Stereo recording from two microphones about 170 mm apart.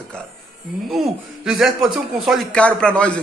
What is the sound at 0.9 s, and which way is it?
Speech, centre (ahead or behind).